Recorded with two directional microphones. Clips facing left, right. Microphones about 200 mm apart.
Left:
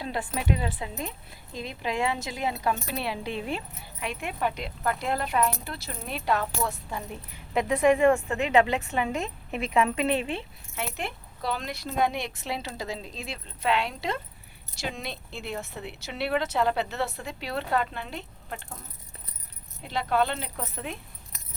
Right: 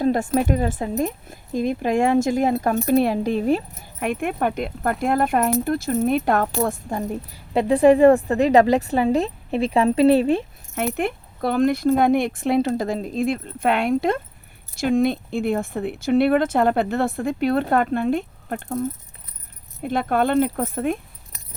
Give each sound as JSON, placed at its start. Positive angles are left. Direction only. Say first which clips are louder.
{"t": 0.0, "sound": "speech", "louder": "right 12 dB", "side_deg": -45}
{"t": 10.8, "sound": "speech", "louder": "right 10 dB", "side_deg": -55}
{"t": 19.8, "sound": "speech", "louder": "right 6 dB", "side_deg": -50}